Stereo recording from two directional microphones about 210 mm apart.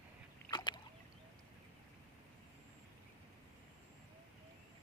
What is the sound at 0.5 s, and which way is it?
Boat, 20° left (ahead or behind).